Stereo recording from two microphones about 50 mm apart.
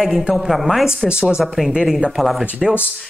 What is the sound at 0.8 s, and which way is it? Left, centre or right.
Speech, centre.